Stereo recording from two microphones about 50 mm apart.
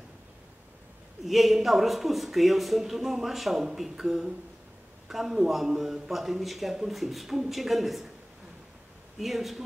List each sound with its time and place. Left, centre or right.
1.2 s a man's voice: centre
9.2 s a man's voice: centre